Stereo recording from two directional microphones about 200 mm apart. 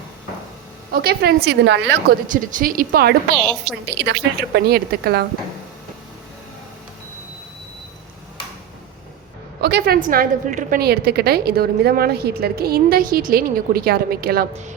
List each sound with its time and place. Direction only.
0.9 s a woman's voice: 50° right (ahead or behind)
2.3 s a woman's voice: 40° right (ahead or behind)
3.3 s a woman's voice: 5° left (ahead or behind)
3.8 s a woman's voice: 55° right (ahead or behind)
9.6 s a woman's voice: 55° right (ahead or behind)
14.5 s a woman's voice: 35° right (ahead or behind)